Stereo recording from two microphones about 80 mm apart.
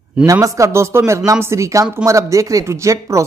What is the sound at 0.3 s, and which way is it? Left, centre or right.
Speech, right.